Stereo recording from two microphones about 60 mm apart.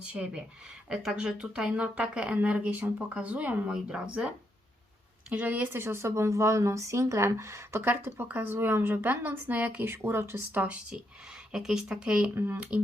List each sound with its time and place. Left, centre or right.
0.1 s speech: centre
5.3 s speech: right
5.7 s speech: right
9.8 s speech: right
10.5 s speech: right
12.3 s speech: right